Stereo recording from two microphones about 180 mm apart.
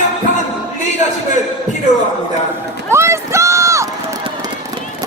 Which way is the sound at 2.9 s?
15° right (ahead or behind).